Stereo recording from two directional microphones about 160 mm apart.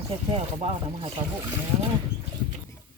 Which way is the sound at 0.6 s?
40° right (ahead or behind).